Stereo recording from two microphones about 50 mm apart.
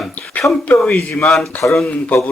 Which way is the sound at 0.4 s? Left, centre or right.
Left.